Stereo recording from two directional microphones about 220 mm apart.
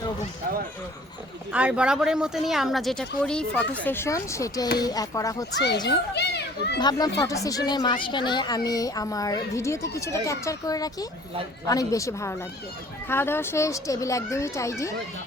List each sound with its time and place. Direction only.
1.5 s a child's voice: 5° right (ahead or behind); by 6.0 s 20° left (ahead or behind)
6.1 s children playing: 50° left (ahead or behind)
6.7 s a child's voice: 20° left (ahead or behind)